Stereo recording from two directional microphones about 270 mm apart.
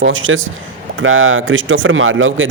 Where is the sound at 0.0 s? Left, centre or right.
Right.